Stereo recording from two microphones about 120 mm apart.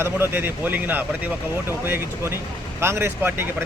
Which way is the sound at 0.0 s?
20° right (ahead or behind).